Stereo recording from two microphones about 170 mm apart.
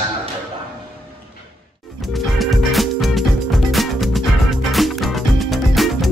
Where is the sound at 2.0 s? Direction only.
Centre (ahead or behind).